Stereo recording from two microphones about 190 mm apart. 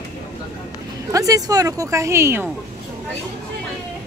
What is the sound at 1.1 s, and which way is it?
Speech, 20° right (ahead or behind).